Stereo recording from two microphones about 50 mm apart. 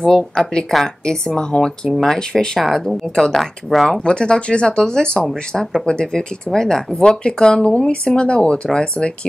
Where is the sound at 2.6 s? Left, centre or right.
Centre.